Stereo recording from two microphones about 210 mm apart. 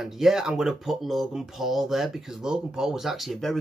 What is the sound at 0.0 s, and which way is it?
Speech, centre (ahead or behind).